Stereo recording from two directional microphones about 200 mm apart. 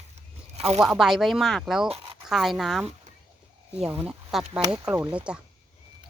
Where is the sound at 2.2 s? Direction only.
Centre (ahead or behind).